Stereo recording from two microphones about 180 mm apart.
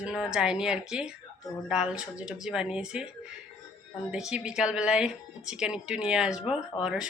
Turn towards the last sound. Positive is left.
turn(degrees=-5)  # may be behind; listen again after turning